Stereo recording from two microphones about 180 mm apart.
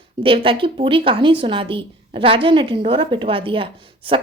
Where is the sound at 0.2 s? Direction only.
30° right (ahead or behind).